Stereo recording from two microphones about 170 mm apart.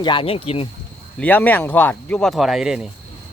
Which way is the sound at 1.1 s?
10° left (ahead or behind).